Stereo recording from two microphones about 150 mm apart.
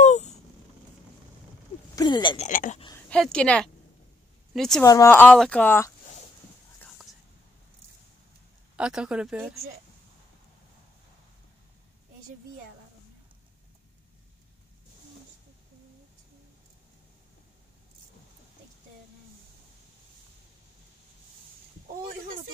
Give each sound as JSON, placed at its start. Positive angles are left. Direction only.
{"t": 0.0, "sound": "a sound", "side_deg": 55}
{"t": 2.0, "sound": "speech", "side_deg": 30}
{"t": 2.3, "sound": "speech", "side_deg": 55}
{"t": 3.1, "sound": "a woman's voice", "side_deg": 5}
{"t": 4.8, "sound": "a woman's voice", "side_deg": 20}
{"t": 8.7, "sound": "speech", "side_deg": -5}